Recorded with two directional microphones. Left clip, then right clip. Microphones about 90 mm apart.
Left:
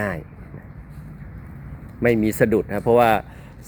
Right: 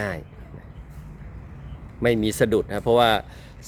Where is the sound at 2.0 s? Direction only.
35° right (ahead or behind).